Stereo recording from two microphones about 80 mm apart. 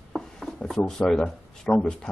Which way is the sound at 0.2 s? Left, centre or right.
Centre.